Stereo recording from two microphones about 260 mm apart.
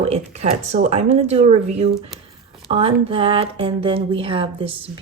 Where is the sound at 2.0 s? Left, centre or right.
Centre.